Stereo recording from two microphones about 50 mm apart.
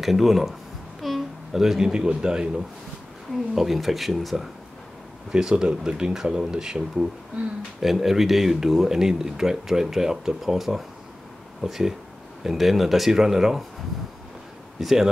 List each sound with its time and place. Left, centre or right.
0.0 s speech: centre
1.0 s a sound: centre
2.0 s speech: centre
3.5 s speech: centre
5.3 s speech: centre
14.8 s speech: centre